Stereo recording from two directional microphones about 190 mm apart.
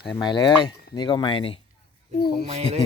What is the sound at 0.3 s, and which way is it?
Speech, 25° left (ahead or behind).